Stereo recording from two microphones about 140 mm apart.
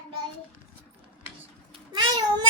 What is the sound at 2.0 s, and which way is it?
Cat, 30° right (ahead or behind).